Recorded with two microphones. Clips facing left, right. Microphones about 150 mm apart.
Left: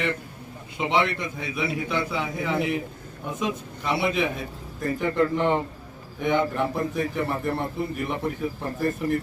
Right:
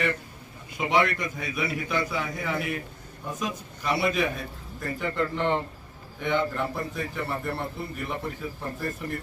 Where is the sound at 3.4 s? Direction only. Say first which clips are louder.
Left 5 dB; 20° left (ahead or behind).